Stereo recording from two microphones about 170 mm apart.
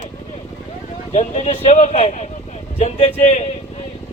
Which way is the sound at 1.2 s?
45° left (ahead or behind).